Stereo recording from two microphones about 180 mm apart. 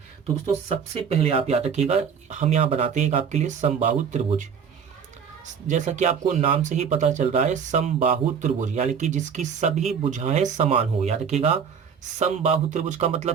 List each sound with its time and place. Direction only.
0.4 s speech: 35° right (ahead or behind)
5.6 s speech: 40° right (ahead or behind)